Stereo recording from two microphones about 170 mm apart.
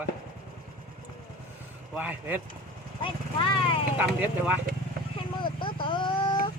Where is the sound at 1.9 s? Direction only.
10° right (ahead or behind).